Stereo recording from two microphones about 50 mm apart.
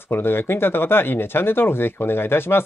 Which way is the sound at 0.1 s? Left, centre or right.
Left.